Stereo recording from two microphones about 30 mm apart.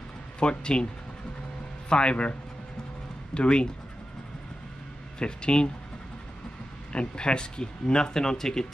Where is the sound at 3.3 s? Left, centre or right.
Left.